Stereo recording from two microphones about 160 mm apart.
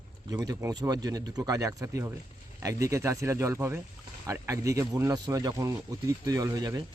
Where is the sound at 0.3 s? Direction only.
20° right (ahead or behind).